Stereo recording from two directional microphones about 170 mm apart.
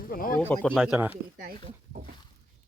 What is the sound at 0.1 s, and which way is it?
Speech, 55° left (ahead or behind).